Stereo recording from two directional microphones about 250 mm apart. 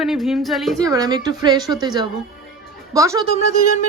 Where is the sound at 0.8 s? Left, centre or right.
Centre.